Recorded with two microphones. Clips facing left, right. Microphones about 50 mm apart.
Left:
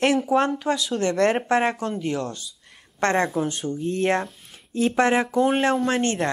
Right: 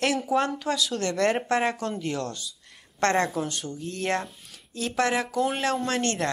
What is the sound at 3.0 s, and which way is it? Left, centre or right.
Speech, centre.